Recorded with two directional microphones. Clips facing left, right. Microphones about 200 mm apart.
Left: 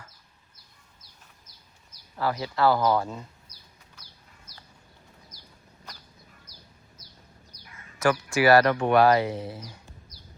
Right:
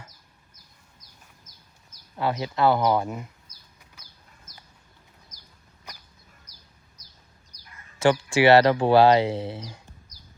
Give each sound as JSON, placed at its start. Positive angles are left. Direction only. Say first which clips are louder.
{"t": 1.5, "sound": "a sound", "louder": "right 1 dB", "side_deg": -40}
{"t": 2.1, "sound": "speech", "louder": "right 1 dB", "side_deg": -20}
{"t": 3.5, "sound": "bird", "louder": "left 2 dB", "side_deg": -45}
{"t": 5.3, "sound": "chicken", "louder": "left 3 dB", "side_deg": -45}
{"t": 7.5, "sound": "a sound", "louder": "left 3 dB", "side_deg": -15}
{"t": 8.3, "sound": "speech", "louder": "right 2 dB", "side_deg": -25}